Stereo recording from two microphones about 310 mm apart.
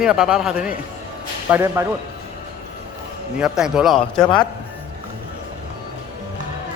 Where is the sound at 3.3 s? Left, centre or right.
Centre.